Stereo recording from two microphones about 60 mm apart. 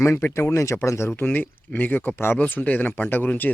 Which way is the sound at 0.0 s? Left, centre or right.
Left.